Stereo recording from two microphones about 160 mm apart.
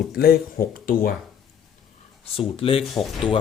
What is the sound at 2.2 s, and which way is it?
Speech, 35° left (ahead or behind).